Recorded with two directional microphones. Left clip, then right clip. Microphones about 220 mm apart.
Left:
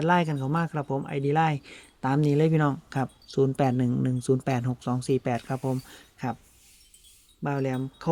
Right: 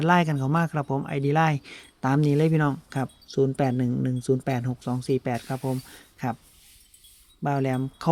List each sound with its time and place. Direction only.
0.0 s speech: 20° right (ahead or behind)
7.4 s speech: 20° right (ahead or behind)